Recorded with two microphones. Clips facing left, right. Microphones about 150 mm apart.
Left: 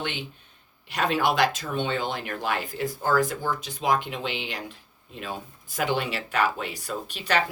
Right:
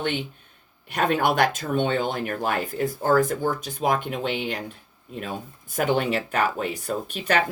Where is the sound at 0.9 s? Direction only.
50° right (ahead or behind).